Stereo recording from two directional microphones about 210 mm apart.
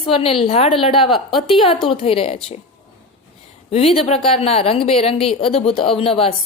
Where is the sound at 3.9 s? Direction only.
30° left (ahead or behind).